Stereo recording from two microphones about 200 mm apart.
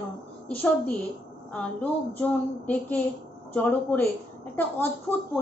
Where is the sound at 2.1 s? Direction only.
10° left (ahead or behind).